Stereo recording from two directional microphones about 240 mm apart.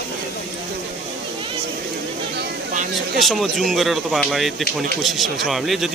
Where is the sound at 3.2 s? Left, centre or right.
Centre.